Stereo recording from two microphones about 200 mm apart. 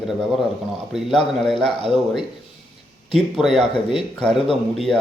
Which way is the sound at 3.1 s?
Centre (ahead or behind).